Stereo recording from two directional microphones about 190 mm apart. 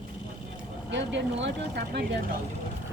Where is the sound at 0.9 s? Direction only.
70° right (ahead or behind).